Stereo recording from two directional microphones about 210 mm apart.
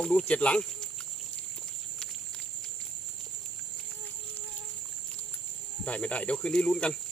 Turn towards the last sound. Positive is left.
turn(degrees=5)  # may be behind; listen again after turning